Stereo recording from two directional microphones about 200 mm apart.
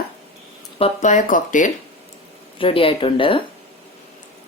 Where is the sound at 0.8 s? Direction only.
35° left (ahead or behind).